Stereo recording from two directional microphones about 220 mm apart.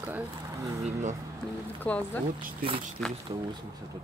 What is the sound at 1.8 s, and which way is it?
Speech, 5° left (ahead or behind).